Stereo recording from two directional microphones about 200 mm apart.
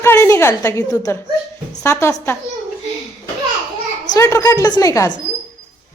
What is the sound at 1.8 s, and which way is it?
Music, 15° left (ahead or behind).